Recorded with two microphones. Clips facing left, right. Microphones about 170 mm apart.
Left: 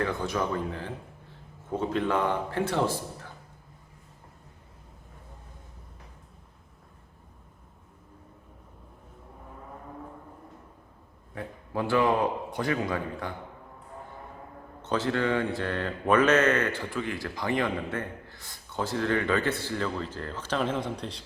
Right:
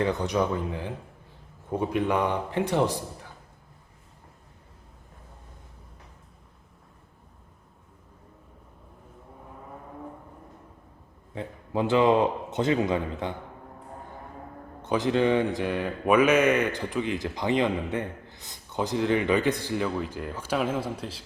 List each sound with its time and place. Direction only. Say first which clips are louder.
0.0 s speech: right 4 dB; 20° right (ahead or behind)
11.3 s a man's voice: right 3 dB; 20° right (ahead or behind)
14.8 s speech: right 4 dB; 15° right (ahead or behind)